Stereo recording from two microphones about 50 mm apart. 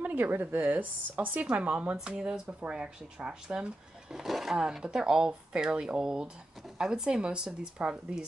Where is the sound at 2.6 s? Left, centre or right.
Centre.